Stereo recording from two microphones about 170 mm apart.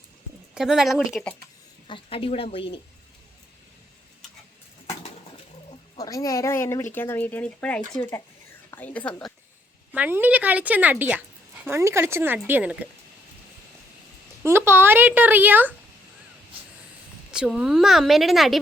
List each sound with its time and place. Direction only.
0.5 s speech: 5° right (ahead or behind)
1.9 s speech: 35° left (ahead or behind)
6.0 s speech: 20° left (ahead or behind)
9.9 s speech: 10° right (ahead or behind)
14.4 s speech: 15° right (ahead or behind)
17.3 s speech: 5° right (ahead or behind)